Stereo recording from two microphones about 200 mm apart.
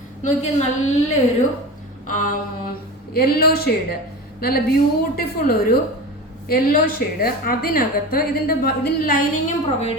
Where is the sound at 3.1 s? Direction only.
50° left (ahead or behind).